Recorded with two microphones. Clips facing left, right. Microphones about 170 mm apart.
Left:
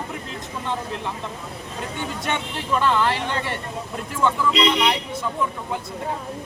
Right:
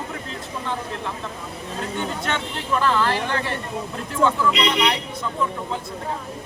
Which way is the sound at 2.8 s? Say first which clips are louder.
Even; 20° left (ahead or behind).